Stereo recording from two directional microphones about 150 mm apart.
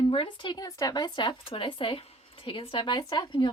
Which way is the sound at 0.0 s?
35° left (ahead or behind).